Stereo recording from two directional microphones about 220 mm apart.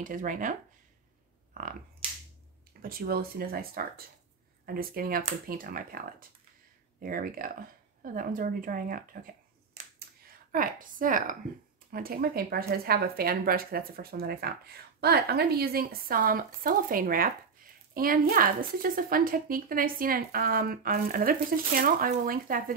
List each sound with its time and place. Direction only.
0.0 s a woman's voice: 35° right (ahead or behind)
1.5 s a sound: 40° right (ahead or behind)
2.8 s a woman's voice: 40° right (ahead or behind)
10.5 s a woman's voice: 40° right (ahead or behind)